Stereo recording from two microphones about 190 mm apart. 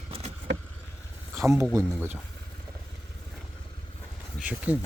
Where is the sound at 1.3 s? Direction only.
15° right (ahead or behind).